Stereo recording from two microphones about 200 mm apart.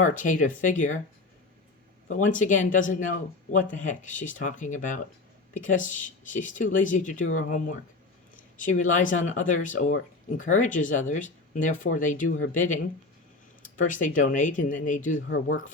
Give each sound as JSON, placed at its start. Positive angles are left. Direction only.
{"t": 0.0, "sound": "speech", "side_deg": 40}
{"t": 2.0, "sound": "speech", "side_deg": 40}
{"t": 8.5, "sound": "speech", "side_deg": 40}